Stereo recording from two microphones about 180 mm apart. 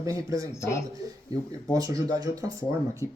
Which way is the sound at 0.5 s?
15° left (ahead or behind).